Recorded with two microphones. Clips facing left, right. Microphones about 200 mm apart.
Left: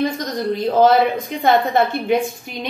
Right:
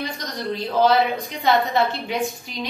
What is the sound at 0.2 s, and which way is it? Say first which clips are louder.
A woman's voice: left 6 dB; 45° left (ahead or behind).